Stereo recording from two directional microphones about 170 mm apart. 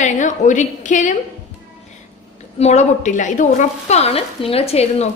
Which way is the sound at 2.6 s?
40° left (ahead or behind).